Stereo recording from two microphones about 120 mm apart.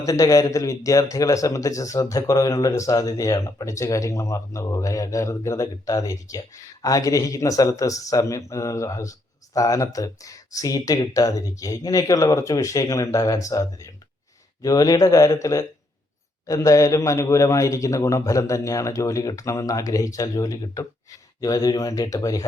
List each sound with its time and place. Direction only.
0.0 s speech: 25° left (ahead or behind)